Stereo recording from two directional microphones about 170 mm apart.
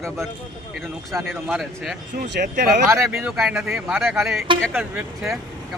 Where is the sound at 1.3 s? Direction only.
Centre (ahead or behind).